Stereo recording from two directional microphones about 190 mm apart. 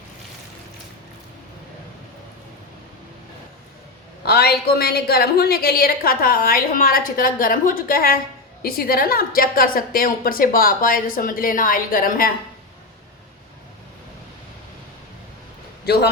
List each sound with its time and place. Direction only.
4.3 s a woman's voice: 55° left (ahead or behind)